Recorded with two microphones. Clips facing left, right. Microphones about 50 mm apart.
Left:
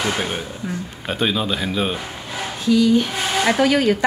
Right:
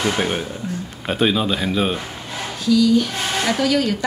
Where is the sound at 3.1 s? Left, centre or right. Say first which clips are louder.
Left 2 dB; centre.